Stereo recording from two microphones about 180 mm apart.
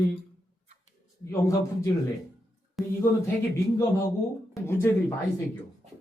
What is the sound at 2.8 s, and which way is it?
Speech, centre (ahead or behind).